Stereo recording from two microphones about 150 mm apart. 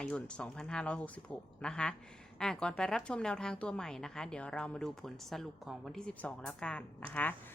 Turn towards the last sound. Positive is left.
turn(degrees=10)  # may be behind; listen again after turning